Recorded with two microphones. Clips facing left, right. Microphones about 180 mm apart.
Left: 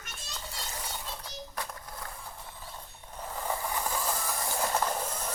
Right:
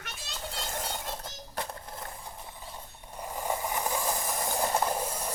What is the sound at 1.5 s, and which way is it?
Music, 30° right (ahead or behind).